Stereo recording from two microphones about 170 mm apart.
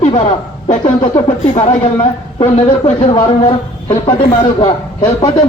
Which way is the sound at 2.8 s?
35° left (ahead or behind).